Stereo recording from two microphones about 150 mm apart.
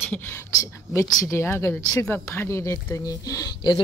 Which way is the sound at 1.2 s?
20° left (ahead or behind).